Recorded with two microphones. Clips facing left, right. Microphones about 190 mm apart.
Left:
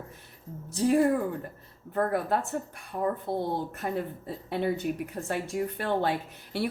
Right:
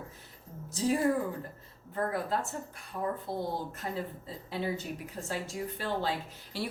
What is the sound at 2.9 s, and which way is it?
Speech, 50° left (ahead or behind).